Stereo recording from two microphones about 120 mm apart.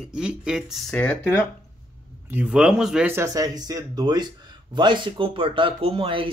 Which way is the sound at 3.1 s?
25° right (ahead or behind).